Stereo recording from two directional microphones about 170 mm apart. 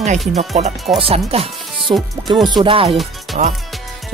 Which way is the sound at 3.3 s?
45° right (ahead or behind).